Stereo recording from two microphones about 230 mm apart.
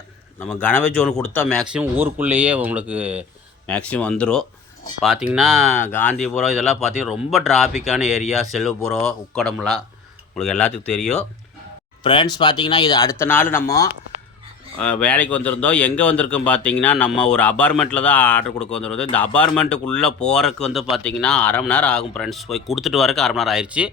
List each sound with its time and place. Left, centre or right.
0.4 s speech: centre
3.7 s a man's voice: centre
12.0 s a man's voice: centre